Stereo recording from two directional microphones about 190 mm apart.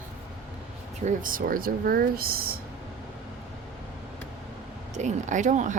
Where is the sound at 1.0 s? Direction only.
45° right (ahead or behind).